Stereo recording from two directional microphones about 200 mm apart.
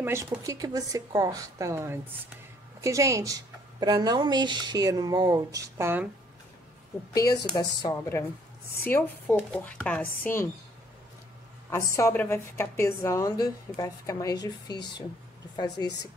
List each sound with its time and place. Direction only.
0.0 s a woman's voice: 15° right (ahead or behind)
7.5 s a woman's voice: 15° left (ahead or behind)
11.7 s a woman's voice: 15° left (ahead or behind)